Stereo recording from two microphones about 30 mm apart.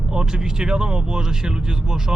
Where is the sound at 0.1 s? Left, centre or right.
Right.